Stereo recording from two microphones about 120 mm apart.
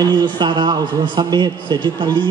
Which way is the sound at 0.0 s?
40° right (ahead or behind).